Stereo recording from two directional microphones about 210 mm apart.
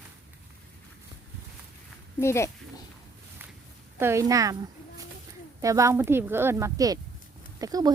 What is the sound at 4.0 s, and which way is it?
Speech, 15° right (ahead or behind).